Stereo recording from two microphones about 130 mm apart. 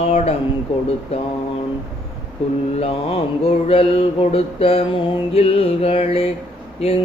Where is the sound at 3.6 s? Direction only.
50° left (ahead or behind).